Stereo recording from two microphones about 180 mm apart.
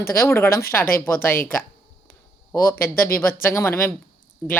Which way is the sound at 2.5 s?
15° left (ahead or behind).